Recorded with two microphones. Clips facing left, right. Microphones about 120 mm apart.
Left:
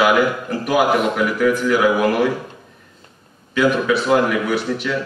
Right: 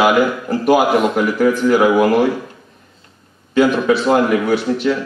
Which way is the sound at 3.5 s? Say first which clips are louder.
Right 3 dB; 35° right (ahead or behind).